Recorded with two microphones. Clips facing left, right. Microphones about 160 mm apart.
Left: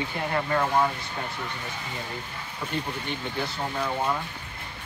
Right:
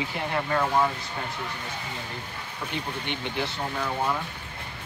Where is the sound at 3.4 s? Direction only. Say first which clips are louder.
Left 1 dB; 5° left (ahead or behind).